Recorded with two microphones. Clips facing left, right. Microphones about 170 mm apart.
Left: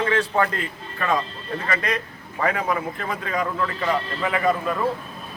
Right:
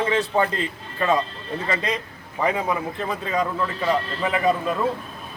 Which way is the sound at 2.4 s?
15° right (ahead or behind).